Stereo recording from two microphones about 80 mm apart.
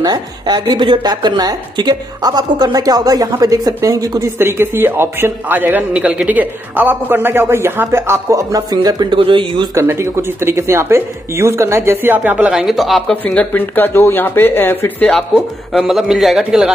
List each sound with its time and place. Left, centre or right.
0.0 s speech: right
4.4 s a man's voice: right
8.8 s speech: right
9.8 s speech: right
12.5 s a man's voice: centre
13.1 s speech: centre
15.0 s a man's voice: centre
15.8 s a man's voice: centre